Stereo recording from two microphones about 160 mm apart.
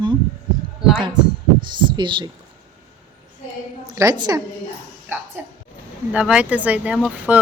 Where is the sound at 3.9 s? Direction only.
20° right (ahead or behind).